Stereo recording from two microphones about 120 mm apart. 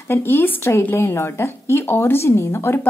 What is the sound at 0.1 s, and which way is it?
A woman's voice, 20° left (ahead or behind).